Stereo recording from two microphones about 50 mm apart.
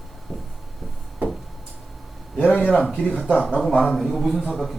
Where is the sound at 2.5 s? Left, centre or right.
Left.